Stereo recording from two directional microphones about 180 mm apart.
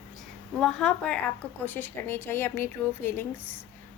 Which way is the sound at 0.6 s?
5° left (ahead or behind).